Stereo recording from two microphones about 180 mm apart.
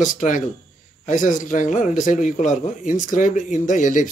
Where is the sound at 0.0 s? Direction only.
45° left (ahead or behind).